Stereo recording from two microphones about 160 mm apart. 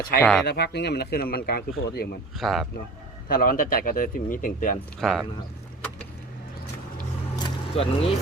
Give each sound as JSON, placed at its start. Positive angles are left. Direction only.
{"t": 0.2, "sound": "speech", "side_deg": 5}
{"t": 0.4, "sound": "speech", "side_deg": 90}
{"t": 2.4, "sound": "speech", "side_deg": 0}
{"t": 3.2, "sound": "speech", "side_deg": 65}
{"t": 4.9, "sound": "speech", "side_deg": 0}
{"t": 7.3, "sound": "a sound", "side_deg": 30}